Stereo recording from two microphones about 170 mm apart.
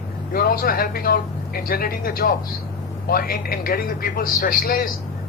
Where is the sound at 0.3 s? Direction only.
60° left (ahead or behind).